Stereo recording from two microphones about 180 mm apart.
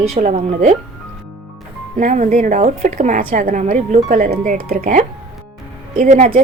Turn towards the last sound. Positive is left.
turn(degrees=-45)  # may be behind; listen again after turning